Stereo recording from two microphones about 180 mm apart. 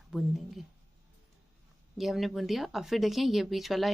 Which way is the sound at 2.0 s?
Centre (ahead or behind).